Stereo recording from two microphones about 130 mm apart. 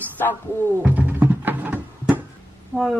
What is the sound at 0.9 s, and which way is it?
Music, 15° right (ahead or behind).